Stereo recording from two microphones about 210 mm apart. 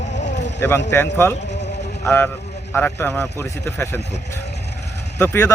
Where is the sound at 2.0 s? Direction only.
10° left (ahead or behind).